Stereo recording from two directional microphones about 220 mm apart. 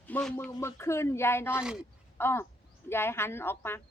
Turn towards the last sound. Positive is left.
turn(degrees=10)  # may be behind; listen again after turning